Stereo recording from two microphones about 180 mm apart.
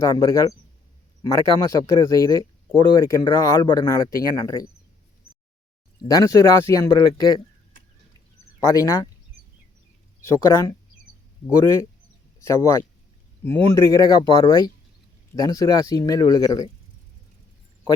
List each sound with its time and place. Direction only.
0.0 s speech: 20° left (ahead or behind)
6.0 s speech: 20° left (ahead or behind)
8.6 s speech: 20° left (ahead or behind)
10.2 s speech: 15° left (ahead or behind)
12.5 s speech: 15° left (ahead or behind)